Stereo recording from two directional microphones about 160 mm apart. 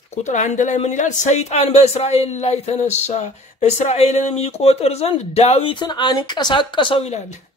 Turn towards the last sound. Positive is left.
turn(degrees=45)  # may be behind; listen again after turning